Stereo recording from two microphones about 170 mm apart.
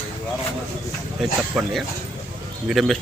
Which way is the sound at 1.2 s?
Centre (ahead or behind).